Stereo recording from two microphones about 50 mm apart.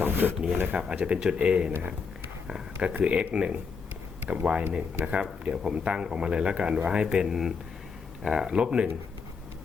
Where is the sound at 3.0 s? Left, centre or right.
Right.